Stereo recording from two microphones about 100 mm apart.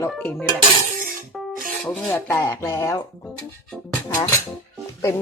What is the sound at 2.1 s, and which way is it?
Speech, 25° left (ahead or behind).